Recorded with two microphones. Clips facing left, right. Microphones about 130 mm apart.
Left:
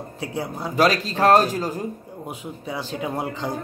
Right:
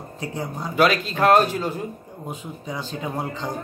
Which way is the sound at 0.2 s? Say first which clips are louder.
Left 1 dB; 10° left (ahead or behind).